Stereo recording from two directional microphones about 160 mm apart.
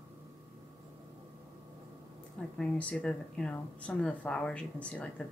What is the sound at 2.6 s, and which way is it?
Speech, 5° left (ahead or behind).